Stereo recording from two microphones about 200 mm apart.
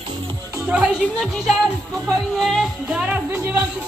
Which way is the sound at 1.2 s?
Centre (ahead or behind).